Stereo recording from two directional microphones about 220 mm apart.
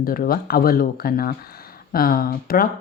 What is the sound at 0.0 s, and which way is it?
Speech, 40° left (ahead or behind).